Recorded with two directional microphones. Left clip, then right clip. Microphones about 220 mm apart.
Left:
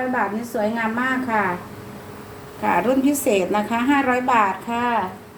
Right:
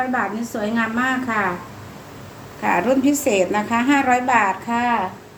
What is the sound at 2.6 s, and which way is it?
A woman's voice, 15° right (ahead or behind).